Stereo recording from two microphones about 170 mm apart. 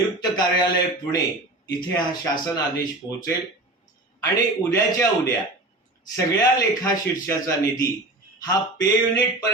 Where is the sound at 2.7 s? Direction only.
70° left (ahead or behind).